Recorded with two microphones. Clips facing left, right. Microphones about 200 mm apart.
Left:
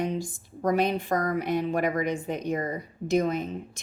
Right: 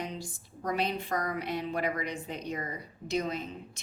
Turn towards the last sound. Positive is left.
turn(degrees=50)  # may be behind; listen again after turning